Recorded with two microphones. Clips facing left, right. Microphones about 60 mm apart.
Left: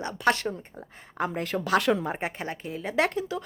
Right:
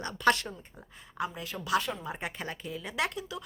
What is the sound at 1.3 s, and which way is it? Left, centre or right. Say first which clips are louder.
Speech: left 6 dB; left.